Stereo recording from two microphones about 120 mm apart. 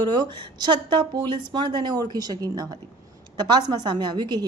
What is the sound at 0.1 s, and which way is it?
A woman's voice, 40° right (ahead or behind).